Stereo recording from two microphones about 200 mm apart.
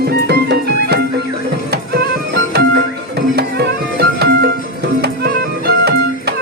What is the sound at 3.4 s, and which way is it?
Music, 55° right (ahead or behind).